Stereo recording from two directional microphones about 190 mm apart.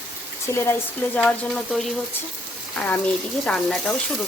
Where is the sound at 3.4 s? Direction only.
5° left (ahead or behind).